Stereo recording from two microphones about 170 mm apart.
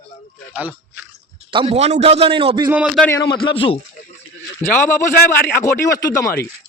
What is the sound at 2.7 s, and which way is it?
Speech, 5° right (ahead or behind).